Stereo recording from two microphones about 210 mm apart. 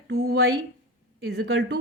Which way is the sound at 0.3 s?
70° right (ahead or behind).